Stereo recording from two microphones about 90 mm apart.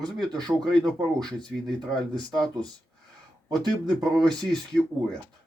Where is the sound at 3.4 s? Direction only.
50° right (ahead or behind).